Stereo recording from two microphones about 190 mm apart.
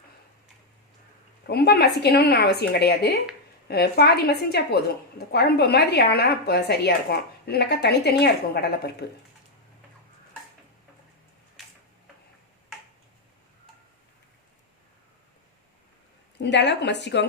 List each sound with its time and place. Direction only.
1.5 s a woman's voice: 55° left (ahead or behind)
11.6 s tick-tock: centre (ahead or behind)
16.4 s speech: 65° left (ahead or behind)